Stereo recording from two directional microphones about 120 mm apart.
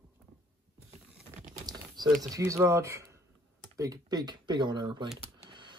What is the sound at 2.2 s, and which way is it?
Speech, 30° right (ahead or behind).